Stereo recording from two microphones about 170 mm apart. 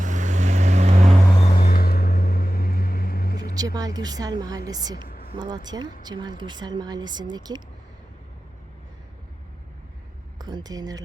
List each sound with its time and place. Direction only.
0.0 s vehicle: 45° right (ahead or behind)
1.5 s vehicle: 55° left (ahead or behind)
3.5 s speech: 20° right (ahead or behind)
5.0 s a sound: 60° left (ahead or behind)
5.4 s speech: 25° right (ahead or behind)
10.3 s speech: 25° right (ahead or behind)